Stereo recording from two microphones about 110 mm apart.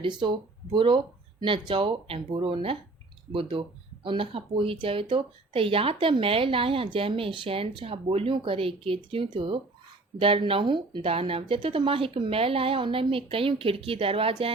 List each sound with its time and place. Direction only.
0.0 s speech: 45° right (ahead or behind)